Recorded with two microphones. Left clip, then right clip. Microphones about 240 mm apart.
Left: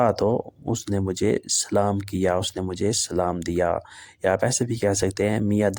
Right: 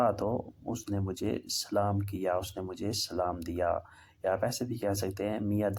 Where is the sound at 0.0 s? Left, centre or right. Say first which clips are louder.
Left 8 dB; left.